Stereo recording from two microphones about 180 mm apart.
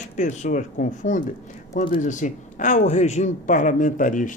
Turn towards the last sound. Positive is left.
turn(degrees=45)  # may be behind; listen again after turning